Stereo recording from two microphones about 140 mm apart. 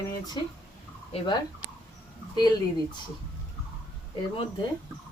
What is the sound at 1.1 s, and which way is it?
Speech, 35° left (ahead or behind).